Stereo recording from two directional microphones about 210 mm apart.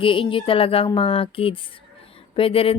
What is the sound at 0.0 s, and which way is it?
Speech, 25° left (ahead or behind).